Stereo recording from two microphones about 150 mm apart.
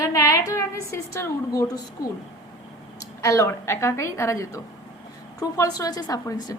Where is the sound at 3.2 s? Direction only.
20° left (ahead or behind).